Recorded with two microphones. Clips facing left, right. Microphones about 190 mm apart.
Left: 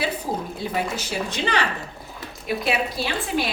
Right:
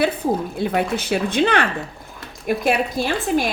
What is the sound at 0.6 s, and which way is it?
A woman's voice, 60° right (ahead or behind).